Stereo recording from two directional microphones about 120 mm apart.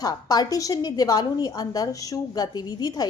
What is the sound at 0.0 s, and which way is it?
A woman's voice, 35° left (ahead or behind).